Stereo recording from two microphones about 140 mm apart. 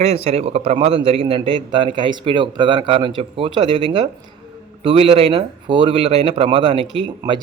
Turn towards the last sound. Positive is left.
turn(degrees=-35)  # may be behind; listen again after turning